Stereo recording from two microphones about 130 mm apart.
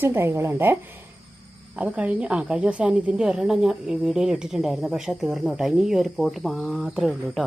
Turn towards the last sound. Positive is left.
turn(degrees=-5)  # may be behind; listen again after turning